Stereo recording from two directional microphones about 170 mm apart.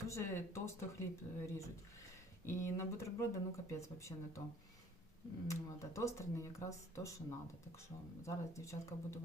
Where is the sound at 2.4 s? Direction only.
15° left (ahead or behind).